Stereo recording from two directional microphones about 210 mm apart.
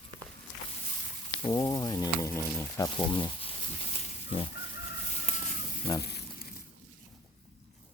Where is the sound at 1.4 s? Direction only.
20° left (ahead or behind).